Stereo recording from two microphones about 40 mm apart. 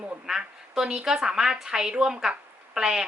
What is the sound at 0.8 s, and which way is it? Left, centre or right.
A woman's voice, centre.